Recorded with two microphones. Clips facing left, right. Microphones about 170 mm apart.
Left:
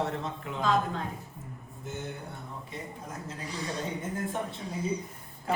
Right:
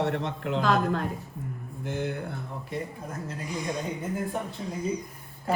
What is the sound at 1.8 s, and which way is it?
Speech, 90° right.